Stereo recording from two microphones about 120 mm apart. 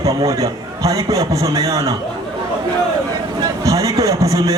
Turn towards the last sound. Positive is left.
turn(degrees=-30)  # may be behind; listen again after turning